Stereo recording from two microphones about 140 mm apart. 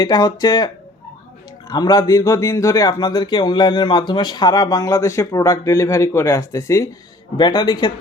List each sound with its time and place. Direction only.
0.0 s a man's voice: 30° left (ahead or behind)
1.7 s a man's voice: 30° left (ahead or behind)